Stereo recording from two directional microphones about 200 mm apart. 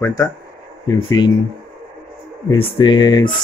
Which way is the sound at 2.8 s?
20° left (ahead or behind).